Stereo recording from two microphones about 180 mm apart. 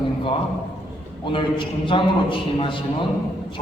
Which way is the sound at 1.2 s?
25° left (ahead or behind).